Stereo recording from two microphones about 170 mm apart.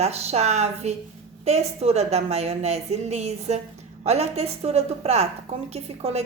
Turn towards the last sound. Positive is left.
turn(degrees=-35)  # may be behind; listen again after turning